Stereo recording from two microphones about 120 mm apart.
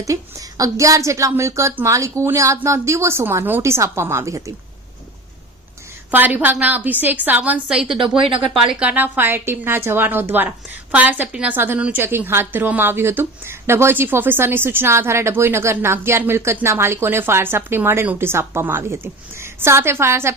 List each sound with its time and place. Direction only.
0.0 s a woman's voice: 25° right (ahead or behind)
6.1 s a woman's voice: 15° right (ahead or behind)